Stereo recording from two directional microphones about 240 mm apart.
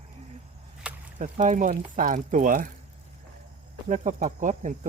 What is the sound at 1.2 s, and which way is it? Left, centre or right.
Speech, right.